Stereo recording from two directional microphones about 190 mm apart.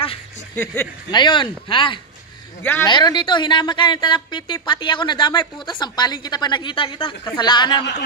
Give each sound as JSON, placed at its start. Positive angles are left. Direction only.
{"t": 1.1, "sound": "a woman's voice", "side_deg": 25}
{"t": 2.6, "sound": "speech", "side_deg": 10}
{"t": 2.9, "sound": "a woman's voice", "side_deg": 20}